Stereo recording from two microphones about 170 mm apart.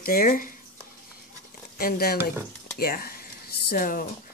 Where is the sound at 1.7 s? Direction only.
65° left (ahead or behind).